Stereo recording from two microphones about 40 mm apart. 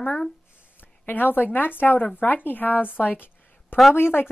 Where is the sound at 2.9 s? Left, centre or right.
Left.